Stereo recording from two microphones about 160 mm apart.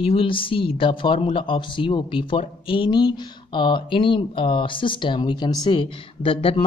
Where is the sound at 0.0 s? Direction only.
35° left (ahead or behind).